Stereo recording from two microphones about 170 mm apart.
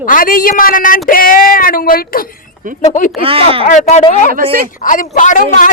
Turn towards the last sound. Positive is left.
turn(degrees=50)  # may be behind; listen again after turning